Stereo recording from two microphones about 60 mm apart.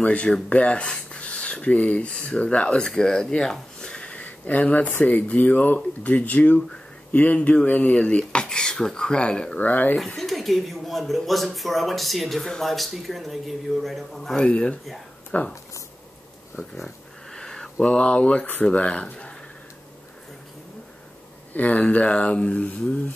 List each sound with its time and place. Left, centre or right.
0.0 s speech: left
9.6 s speech: left
9.9 s speech: centre
15.3 s speech: left
16.5 s speech: centre
17.3 s speech: centre
21.5 s speech: left